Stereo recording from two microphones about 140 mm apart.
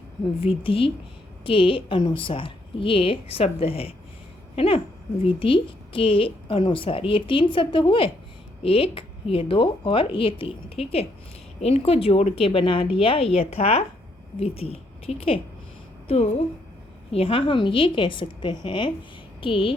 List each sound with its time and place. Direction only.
0.3 s speech: 40° left (ahead or behind)
17.1 s speech: 45° left (ahead or behind)